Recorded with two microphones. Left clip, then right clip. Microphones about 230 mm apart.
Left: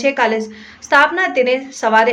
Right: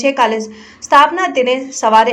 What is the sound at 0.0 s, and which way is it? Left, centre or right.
A woman's voice, centre.